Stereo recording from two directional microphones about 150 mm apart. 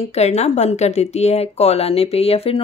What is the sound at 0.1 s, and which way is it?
Speech, 45° left (ahead or behind).